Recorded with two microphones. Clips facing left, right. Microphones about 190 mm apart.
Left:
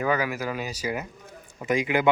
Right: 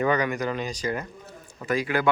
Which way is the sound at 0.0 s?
5° left (ahead or behind).